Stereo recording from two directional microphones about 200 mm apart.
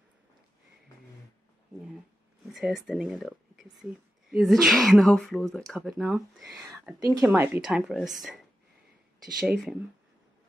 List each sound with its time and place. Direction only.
2.4 s speech: centre (ahead or behind)
7.0 s speech: 15° right (ahead or behind)